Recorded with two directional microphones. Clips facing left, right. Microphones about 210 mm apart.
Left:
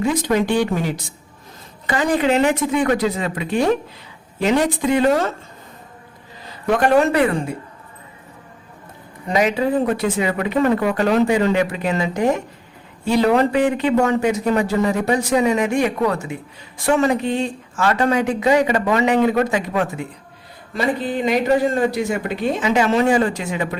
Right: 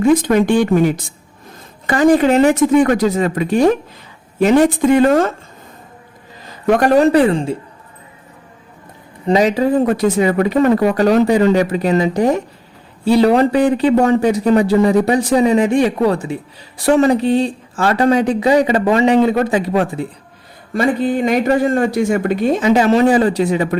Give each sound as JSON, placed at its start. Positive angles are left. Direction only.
{"t": 0.0, "sound": "speech", "side_deg": -50}
{"t": 6.7, "sound": "a man's voice", "side_deg": -40}
{"t": 9.2, "sound": "a man's voice", "side_deg": -30}
{"t": 20.7, "sound": "a man's voice", "side_deg": -50}